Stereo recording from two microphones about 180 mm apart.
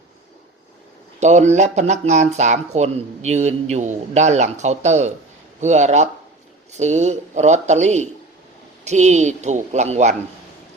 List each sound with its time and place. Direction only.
1.2 s speech: 40° right (ahead or behind)